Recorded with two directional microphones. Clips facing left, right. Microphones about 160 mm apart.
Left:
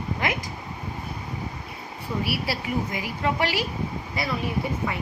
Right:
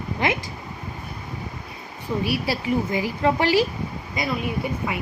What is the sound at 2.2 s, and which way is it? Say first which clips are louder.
A woman's voice: right 7 dB; 20° right (ahead or behind).